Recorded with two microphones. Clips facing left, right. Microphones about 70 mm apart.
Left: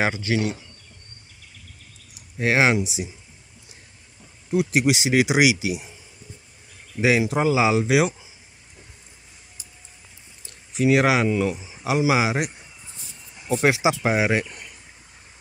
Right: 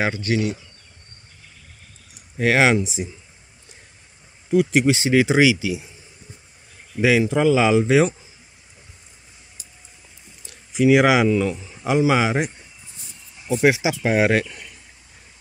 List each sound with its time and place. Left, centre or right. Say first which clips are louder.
0.0 s speech: right 1 dB; left
2.5 s speech: right 2 dB; centre
4.5 s speech: right 4 dB; centre
4.8 s a man's voice: right 2 dB; centre
6.9 s speech: right 2 dB; right
7.3 s a man's voice: right 3 dB; centre
10.7 s speech: right 3 dB; centre
11.2 s a man's voice: right 3 dB; centre
13.7 s speech: even; left
14.2 s speech: right 4 dB; centre